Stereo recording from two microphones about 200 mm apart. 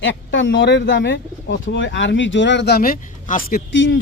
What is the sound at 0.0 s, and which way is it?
Speech, 65° left (ahead or behind).